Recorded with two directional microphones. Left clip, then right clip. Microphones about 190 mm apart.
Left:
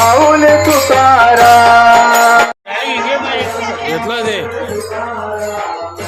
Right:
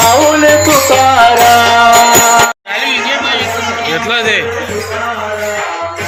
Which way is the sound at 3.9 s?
20° left (ahead or behind).